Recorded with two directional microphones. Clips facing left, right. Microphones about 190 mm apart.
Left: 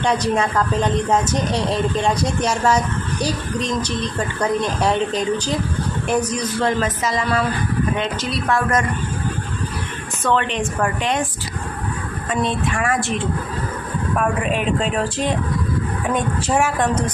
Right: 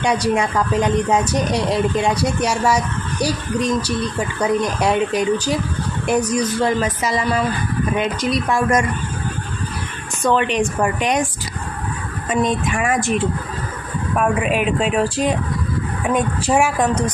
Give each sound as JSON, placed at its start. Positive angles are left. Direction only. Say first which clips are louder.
{"t": 0.0, "sound": "speech", "louder": "right 1 dB", "side_deg": -10}
{"t": 8.4, "sound": "speech", "louder": "even", "side_deg": -15}
{"t": 10.2, "sound": "speech", "louder": "right 3 dB", "side_deg": -15}
{"t": 12.3, "sound": "speech", "louder": "right 3 dB", "side_deg": -15}
{"t": 14.2, "sound": "speech", "louder": "right 3 dB", "side_deg": -5}